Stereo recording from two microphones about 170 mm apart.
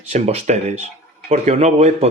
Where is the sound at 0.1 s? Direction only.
40° right (ahead or behind).